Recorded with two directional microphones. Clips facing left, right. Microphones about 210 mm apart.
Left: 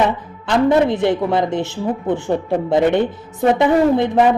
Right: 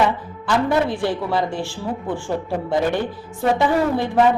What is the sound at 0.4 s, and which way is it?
A woman's voice, 20° left (ahead or behind).